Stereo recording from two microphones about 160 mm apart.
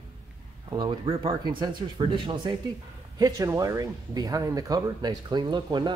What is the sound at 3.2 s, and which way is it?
Speech, 20° right (ahead or behind).